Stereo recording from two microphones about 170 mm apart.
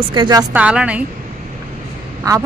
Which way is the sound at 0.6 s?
5° right (ahead or behind).